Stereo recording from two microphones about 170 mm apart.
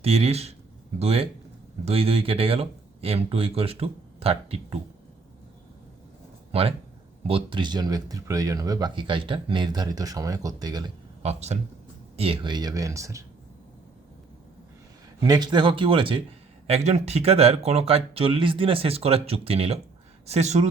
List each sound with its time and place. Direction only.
0.0 s speech: 35° right (ahead or behind)
6.5 s speech: 35° right (ahead or behind)
11.2 s speech: 40° right (ahead or behind); by 13.2 s 20° right (ahead or behind)
15.2 s speech: 25° right (ahead or behind); by 20.7 s 40° right (ahead or behind)